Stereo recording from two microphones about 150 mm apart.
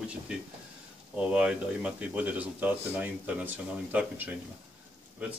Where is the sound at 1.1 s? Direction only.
10° right (ahead or behind).